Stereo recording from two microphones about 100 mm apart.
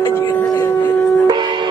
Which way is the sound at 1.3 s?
50° right (ahead or behind).